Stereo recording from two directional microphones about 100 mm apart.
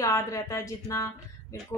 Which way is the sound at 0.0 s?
35° left (ahead or behind).